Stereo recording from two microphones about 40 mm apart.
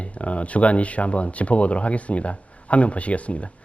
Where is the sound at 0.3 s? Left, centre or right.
Left.